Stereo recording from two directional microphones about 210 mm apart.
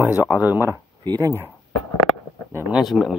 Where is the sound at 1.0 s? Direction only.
20° right (ahead or behind).